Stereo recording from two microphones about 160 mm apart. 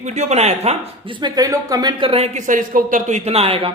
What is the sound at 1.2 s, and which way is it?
Speech, 25° right (ahead or behind).